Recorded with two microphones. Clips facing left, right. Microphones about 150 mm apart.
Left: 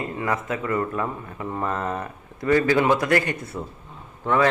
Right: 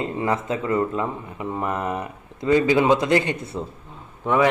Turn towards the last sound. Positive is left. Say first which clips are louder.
# right 1 dB
turn(degrees=-15)  # may be behind; listen again after turning